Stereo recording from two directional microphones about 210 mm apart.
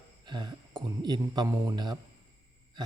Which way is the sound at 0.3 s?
20° right (ahead or behind).